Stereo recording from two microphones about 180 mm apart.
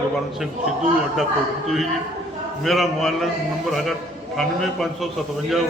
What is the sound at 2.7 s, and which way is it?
Speech, centre (ahead or behind).